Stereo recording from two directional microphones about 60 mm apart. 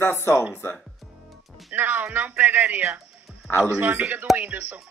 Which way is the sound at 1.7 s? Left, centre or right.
Right.